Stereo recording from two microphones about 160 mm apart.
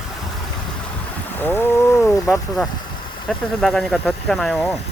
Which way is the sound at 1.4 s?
10° left (ahead or behind).